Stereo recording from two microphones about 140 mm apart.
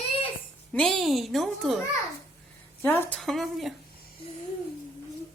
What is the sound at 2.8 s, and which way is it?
Speech, 15° left (ahead or behind).